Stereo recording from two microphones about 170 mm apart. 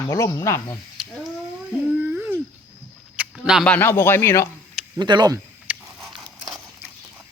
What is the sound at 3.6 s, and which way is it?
Speech, 10° left (ahead or behind).